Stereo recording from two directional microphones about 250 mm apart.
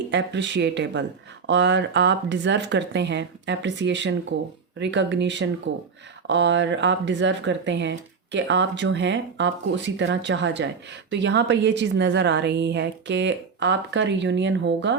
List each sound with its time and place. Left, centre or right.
0.1 s speech: right